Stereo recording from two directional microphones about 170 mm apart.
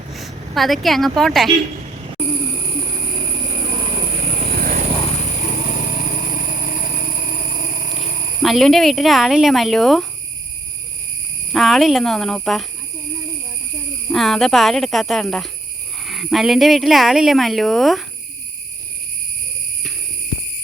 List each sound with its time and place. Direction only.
0.1 s speech: centre (ahead or behind)
3.6 s vehicle: 30° right (ahead or behind)
4.4 s vehicle: 55° right (ahead or behind)
5.0 s vehicle: 40° left (ahead or behind)
8.4 s speech: centre (ahead or behind)
11.5 s speech: centre (ahead or behind)
14.1 s speech: centre (ahead or behind)